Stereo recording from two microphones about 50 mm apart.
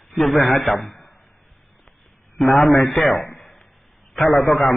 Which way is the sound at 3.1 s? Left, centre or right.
Left.